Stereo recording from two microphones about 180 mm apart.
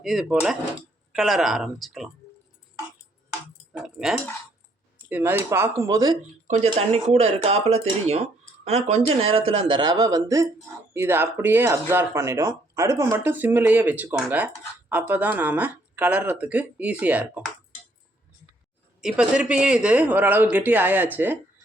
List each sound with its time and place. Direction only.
0.0 s speech: centre (ahead or behind)
3.7 s speech: 5° right (ahead or behind); by 6.1 s 20° right (ahead or behind)
6.5 s speech: 35° right (ahead or behind); by 17.5 s 10° right (ahead or behind)
19.0 s speech: 5° right (ahead or behind)